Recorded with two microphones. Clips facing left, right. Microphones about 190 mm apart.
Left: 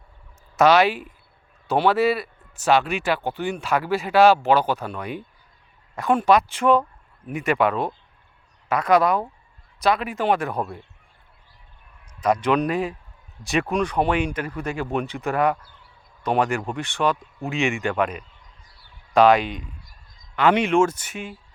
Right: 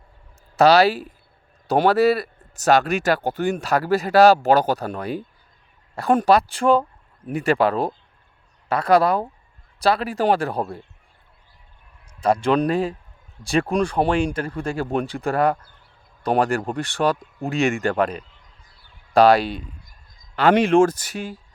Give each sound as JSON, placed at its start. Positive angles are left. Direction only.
{"t": 0.5, "sound": "speech", "side_deg": -35}
{"t": 12.2, "sound": "speech", "side_deg": -30}